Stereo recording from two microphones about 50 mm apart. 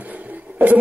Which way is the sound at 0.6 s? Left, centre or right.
Right.